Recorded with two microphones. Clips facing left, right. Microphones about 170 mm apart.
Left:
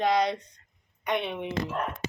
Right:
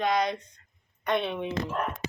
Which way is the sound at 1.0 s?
15° left (ahead or behind).